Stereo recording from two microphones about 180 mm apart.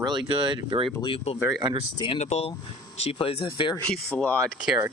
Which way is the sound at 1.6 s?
25° right (ahead or behind).